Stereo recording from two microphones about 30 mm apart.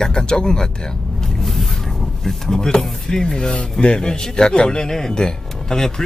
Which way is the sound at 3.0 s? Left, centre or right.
Left.